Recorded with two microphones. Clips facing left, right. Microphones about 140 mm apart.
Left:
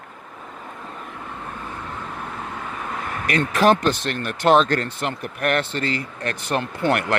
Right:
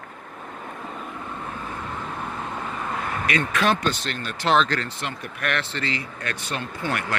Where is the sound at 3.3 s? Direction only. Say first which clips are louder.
Left 6 dB; 40° left (ahead or behind).